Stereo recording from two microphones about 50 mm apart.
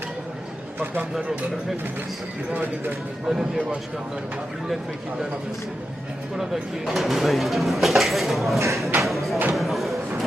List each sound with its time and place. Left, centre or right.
2.5 s speech: right
3.2 s speech: centre
6.3 s speech: centre
9.6 s a sound: centre